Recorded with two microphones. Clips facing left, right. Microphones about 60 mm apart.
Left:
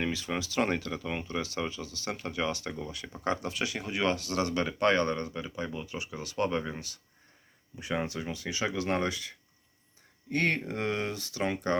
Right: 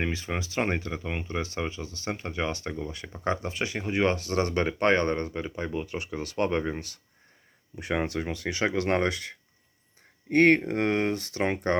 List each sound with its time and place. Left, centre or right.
0.0 s speech: right